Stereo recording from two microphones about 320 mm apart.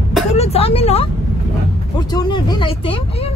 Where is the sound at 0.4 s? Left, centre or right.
Centre.